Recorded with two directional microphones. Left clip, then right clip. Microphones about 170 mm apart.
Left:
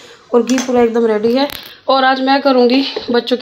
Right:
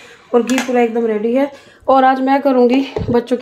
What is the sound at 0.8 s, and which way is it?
Speech, centre (ahead or behind).